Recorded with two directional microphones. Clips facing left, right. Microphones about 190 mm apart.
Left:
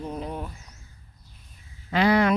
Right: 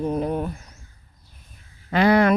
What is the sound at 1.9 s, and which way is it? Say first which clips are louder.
Speech: right 3 dB; 50° right (ahead or behind).